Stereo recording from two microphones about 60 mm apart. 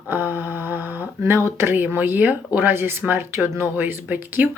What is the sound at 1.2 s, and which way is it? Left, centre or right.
Speech, right.